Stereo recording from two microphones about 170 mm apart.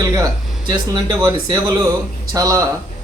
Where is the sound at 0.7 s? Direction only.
20° right (ahead or behind).